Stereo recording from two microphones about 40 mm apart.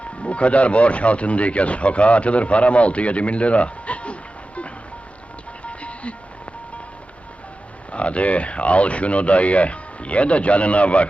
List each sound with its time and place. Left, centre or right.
0.2 s speech: left
5.6 s music: left
7.9 s speech: left